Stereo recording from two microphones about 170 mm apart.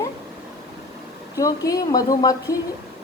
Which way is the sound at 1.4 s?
20° left (ahead or behind).